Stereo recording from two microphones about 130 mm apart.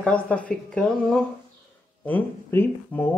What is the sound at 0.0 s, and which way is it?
Speech, 10° left (ahead or behind).